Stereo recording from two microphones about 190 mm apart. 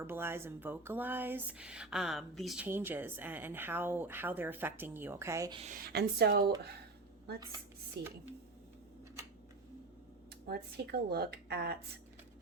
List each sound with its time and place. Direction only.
0.0 s speech: 10° right (ahead or behind)
2.6 s speech: 10° right (ahead or behind)
5.7 s speech: 55° right (ahead or behind)
8.0 s speech: 60° right (ahead or behind)
10.4 s speech: 55° right (ahead or behind)